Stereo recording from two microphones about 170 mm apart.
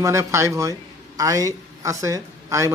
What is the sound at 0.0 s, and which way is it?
A man's voice, 15° right (ahead or behind).